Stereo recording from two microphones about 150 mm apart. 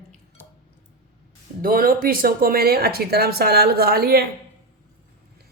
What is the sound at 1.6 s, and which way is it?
Speech, 75° right (ahead or behind).